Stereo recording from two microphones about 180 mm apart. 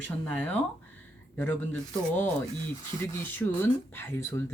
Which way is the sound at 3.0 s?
10° left (ahead or behind).